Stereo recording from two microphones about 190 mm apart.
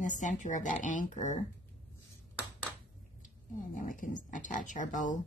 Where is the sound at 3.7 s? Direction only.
45° left (ahead or behind).